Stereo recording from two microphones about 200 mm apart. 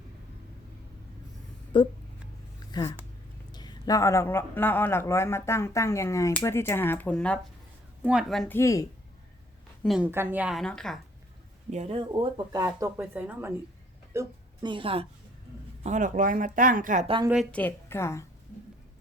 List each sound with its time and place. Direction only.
1.7 s speech: 25° left (ahead or behind)
3.5 s a man's voice: 20° left (ahead or behind)
9.8 s a woman's voice: centre (ahead or behind)
11.7 s a woman's voice: 30° right (ahead or behind)
15.8 s speech: 40° right (ahead or behind)
17.2 s a man's voice: centre (ahead or behind)